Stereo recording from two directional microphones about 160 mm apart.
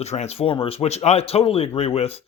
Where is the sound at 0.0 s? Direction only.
45° left (ahead or behind).